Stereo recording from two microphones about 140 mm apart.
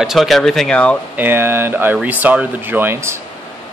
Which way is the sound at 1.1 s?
15° right (ahead or behind).